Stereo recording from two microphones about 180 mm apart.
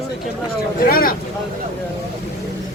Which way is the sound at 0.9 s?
55° left (ahead or behind).